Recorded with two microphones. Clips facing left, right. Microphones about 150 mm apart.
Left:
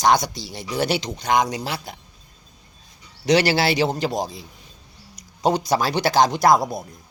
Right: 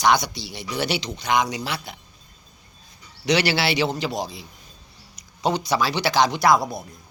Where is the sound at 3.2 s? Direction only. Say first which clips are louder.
Left 3 dB; 45° left (ahead or behind).